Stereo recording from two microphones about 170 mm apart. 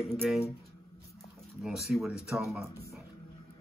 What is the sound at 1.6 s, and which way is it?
Speech, centre (ahead or behind).